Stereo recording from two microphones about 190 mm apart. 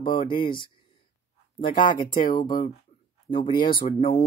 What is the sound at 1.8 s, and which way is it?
Speech, 25° left (ahead or behind).